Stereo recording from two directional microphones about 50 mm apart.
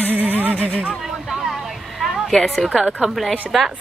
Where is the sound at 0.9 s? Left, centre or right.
Centre.